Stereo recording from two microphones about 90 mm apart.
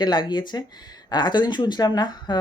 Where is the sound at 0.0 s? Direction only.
55° left (ahead or behind).